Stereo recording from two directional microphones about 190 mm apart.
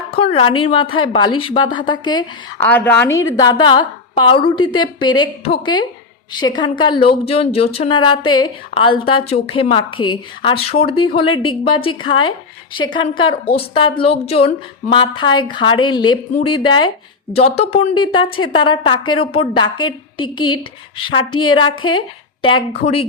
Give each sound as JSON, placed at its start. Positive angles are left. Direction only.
{"t": 0.3, "sound": "speech", "side_deg": 25}
{"t": 2.6, "sound": "speech", "side_deg": 10}